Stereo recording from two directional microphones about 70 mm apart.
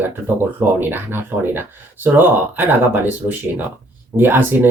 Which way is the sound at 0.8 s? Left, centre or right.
Right.